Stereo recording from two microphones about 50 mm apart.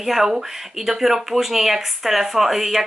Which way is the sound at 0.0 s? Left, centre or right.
Centre.